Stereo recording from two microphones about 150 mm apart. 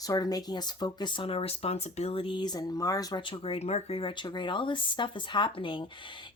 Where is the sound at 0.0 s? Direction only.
25° left (ahead or behind).